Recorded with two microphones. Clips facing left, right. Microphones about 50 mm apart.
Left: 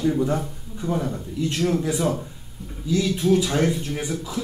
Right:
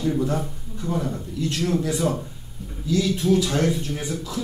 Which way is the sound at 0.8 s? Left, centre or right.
Centre.